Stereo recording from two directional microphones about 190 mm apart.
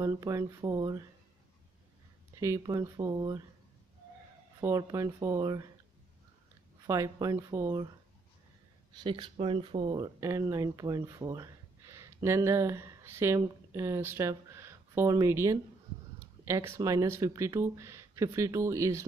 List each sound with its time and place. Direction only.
0.0 s speech: 20° right (ahead or behind)
2.4 s speech: 15° right (ahead or behind)
4.6 s speech: 15° right (ahead or behind)
6.9 s speech: 15° right (ahead or behind)
8.9 s speech: 25° right (ahead or behind)